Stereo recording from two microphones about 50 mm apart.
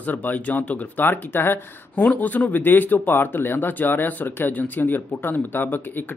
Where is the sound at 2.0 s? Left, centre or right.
Left.